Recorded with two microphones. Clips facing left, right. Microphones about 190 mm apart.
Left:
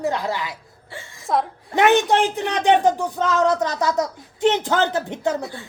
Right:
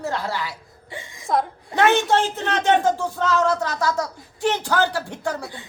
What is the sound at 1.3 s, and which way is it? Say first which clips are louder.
Speech: even; centre (ahead or behind).